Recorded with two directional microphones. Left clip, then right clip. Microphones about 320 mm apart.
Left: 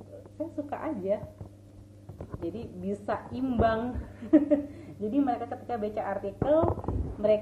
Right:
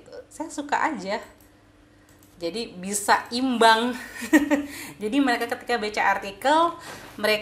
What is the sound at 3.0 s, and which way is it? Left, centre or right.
Speech, right.